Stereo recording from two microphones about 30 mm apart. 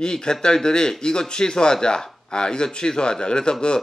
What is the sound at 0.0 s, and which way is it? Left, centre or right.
A man's voice, left.